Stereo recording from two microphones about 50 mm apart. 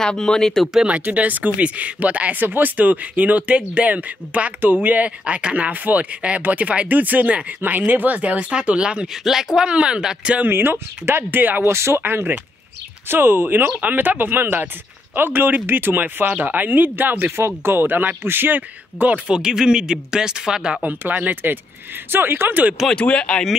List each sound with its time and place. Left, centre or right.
0.0 s speech: centre
1.1 s speech: right
10.5 s a man's voice: right
11.6 s speech: right
12.0 s a man's voice: right
17.4 s a man's voice: right
19.1 s speech: centre
21.0 s a man's voice: right
22.9 s speech: left